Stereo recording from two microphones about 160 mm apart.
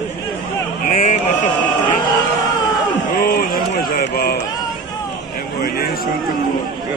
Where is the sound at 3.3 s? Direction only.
70° left (ahead or behind).